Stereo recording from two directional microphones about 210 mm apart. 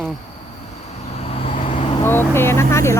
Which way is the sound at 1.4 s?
30° left (ahead or behind).